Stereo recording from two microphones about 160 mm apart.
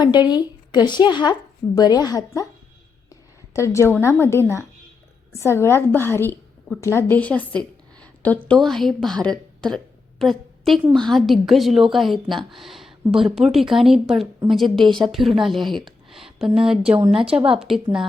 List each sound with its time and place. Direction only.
0.0 s speech: 25° left (ahead or behind)
3.5 s a woman's voice: 20° left (ahead or behind); by 18.0 s 5° right (ahead or behind)